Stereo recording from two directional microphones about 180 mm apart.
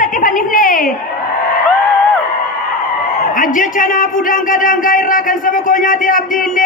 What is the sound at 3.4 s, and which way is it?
Speech, 50° left (ahead or behind).